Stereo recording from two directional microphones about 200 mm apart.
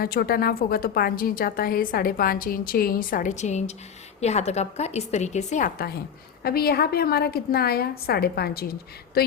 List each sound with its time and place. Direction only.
0.0 s a woman's voice: 50° left (ahead or behind)